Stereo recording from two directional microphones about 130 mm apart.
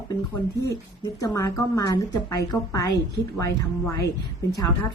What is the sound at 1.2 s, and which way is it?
A woman's voice, 25° left (ahead or behind).